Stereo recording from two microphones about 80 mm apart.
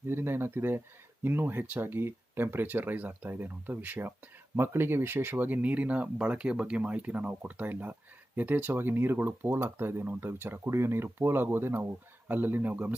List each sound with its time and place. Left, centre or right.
0.1 s speech: right